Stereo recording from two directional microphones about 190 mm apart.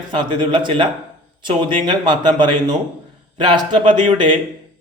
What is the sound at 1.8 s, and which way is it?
Speech, 25° right (ahead or behind).